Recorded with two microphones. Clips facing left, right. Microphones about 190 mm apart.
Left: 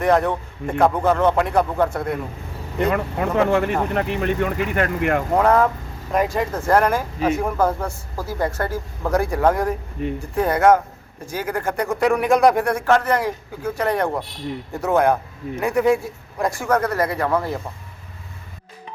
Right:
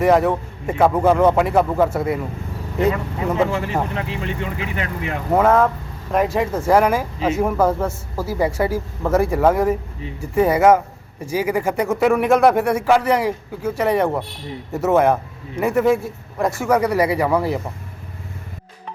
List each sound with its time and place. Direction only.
0.0 s speech: 5° right (ahead or behind)
2.9 s speech: 60° left (ahead or behind)
5.3 s speech: centre (ahead or behind)